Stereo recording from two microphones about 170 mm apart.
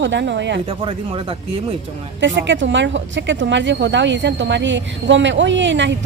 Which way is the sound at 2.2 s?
90° right.